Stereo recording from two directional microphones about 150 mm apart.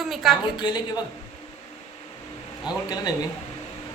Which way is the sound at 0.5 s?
30° left (ahead or behind).